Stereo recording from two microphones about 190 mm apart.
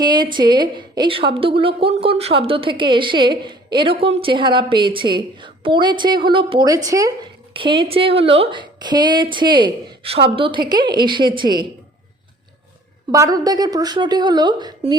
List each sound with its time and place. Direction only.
0.0 s a woman's voice: 25° right (ahead or behind)
13.1 s a woman's voice: 20° right (ahead or behind)